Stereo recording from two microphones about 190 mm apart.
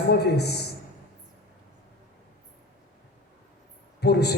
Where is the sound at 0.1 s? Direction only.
60° left (ahead or behind).